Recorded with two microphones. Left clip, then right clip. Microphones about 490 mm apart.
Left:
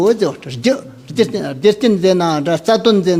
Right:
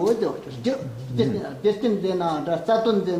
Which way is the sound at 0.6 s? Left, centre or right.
Left.